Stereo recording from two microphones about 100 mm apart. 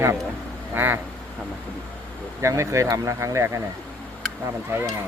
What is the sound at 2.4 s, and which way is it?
Speech, 30° right (ahead or behind).